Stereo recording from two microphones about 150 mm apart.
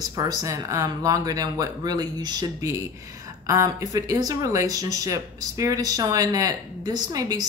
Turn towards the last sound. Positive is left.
turn(degrees=-25)  # may be behind; listen again after turning